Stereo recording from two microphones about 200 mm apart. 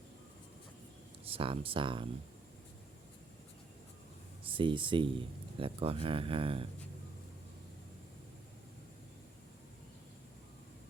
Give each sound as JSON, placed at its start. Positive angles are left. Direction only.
{"t": 1.3, "sound": "speech", "side_deg": -25}
{"t": 4.5, "sound": "speech", "side_deg": -25}